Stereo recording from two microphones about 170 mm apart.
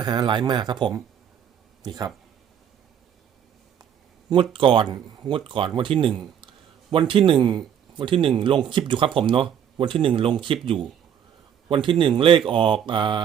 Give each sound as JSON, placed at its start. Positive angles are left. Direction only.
{"t": 0.0, "sound": "speech", "side_deg": -25}
{"t": 4.3, "sound": "speech", "side_deg": -30}